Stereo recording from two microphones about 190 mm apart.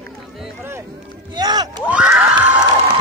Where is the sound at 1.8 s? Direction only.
5° right (ahead or behind).